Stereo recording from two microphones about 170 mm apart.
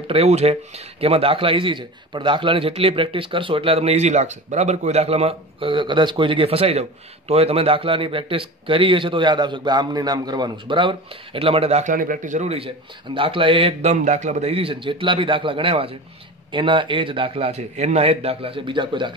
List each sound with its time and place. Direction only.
0.1 s speech: 40° right (ahead or behind)
13.9 s speech: 45° right (ahead or behind); by 19.1 s 30° right (ahead or behind)